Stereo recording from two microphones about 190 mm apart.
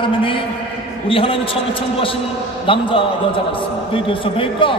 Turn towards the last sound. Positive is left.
turn(degrees=25)  # may be behind; listen again after turning